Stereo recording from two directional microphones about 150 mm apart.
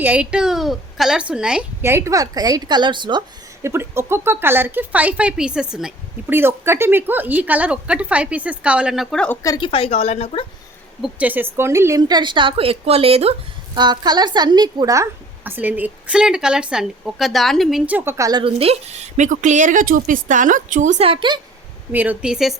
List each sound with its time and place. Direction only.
0.0 s a woman's voice: 10° right (ahead or behind)
1.8 s speech: 20° right (ahead or behind)
3.6 s speech: 15° right (ahead or behind); by 9.4 s 5° left (ahead or behind)
9.4 s speech: 25° left (ahead or behind)
9.6 s a woman's voice: 40° left (ahead or behind)
11.0 s speech: 10° right (ahead or behind); by 13.3 s 40° right (ahead or behind)
13.7 s speech: 30° right (ahead or behind)
18.3 s a woman's voice: 35° right (ahead or behind); by 21.1 s 55° right (ahead or behind)
21.1 s a woman's voice: 35° right (ahead or behind)
21.9 s a woman's voice: 10° right (ahead or behind)